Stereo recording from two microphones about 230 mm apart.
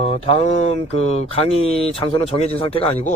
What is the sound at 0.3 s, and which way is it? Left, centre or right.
Speech, left.